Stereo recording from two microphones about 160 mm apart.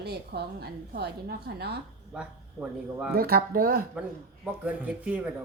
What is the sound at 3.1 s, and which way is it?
Speech, 65° right (ahead or behind).